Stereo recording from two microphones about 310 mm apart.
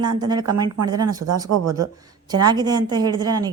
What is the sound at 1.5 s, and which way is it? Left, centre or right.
Speech, right.